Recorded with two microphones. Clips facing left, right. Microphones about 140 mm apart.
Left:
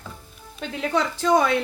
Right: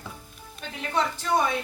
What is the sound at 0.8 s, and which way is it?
Speech, 90° left.